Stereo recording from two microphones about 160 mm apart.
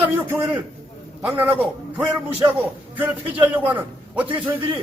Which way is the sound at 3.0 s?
10° right (ahead or behind).